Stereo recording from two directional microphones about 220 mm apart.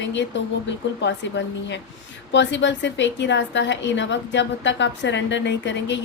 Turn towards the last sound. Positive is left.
turn(degrees=55)  # may be behind; listen again after turning